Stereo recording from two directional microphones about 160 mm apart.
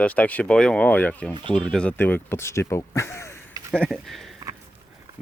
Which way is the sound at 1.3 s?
30° right (ahead or behind).